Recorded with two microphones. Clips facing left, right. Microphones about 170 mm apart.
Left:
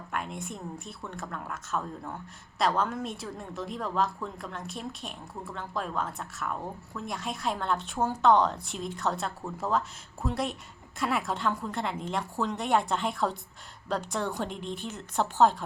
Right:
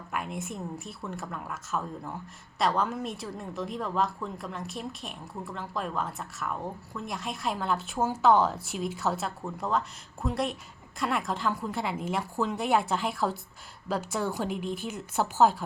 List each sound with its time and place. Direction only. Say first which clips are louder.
0.1 s a woman's voice: right 1 dB; 5° right (ahead or behind)